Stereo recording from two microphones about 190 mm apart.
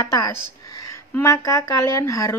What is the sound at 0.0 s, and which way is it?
A woman's voice, 15° left (ahead or behind).